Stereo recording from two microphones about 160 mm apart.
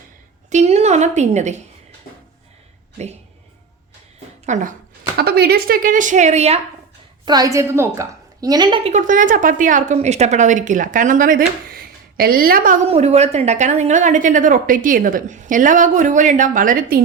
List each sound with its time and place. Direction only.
0.5 s a woman's voice: 45° right (ahead or behind)
4.4 s speech: 50° right (ahead or behind)
5.1 s speech: 80° right; by 6.6 s 45° right (ahead or behind)
7.3 s a woman's voice: 25° right (ahead or behind)
8.9 s speech: 55° right (ahead or behind)
12.9 s a woman's voice: 40° right (ahead or behind); by 17.0 s 55° right (ahead or behind)